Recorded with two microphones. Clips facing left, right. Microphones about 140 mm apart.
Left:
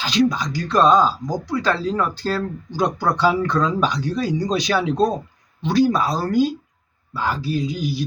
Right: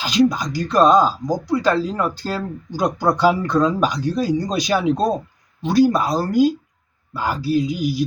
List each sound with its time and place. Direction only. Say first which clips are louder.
0.0 s speech: right 2 dB; 10° right (ahead or behind)